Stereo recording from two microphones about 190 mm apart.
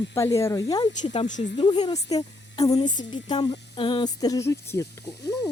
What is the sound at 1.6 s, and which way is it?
A woman's voice, 25° left (ahead or behind).